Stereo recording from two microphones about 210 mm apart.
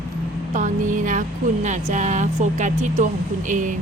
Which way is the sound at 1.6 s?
35° right (ahead or behind).